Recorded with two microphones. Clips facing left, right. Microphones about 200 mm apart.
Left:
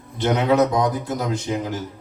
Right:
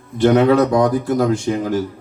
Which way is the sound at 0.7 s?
20° left (ahead or behind).